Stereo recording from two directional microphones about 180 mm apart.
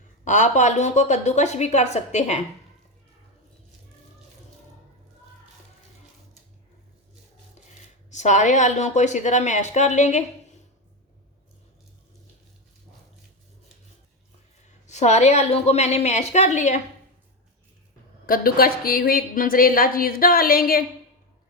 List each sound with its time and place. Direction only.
0.3 s a woman's voice: 40° left (ahead or behind)
8.1 s a woman's voice: 40° left (ahead or behind)
14.8 s a woman's voice: 40° left (ahead or behind)
18.3 s a woman's voice: 55° left (ahead or behind)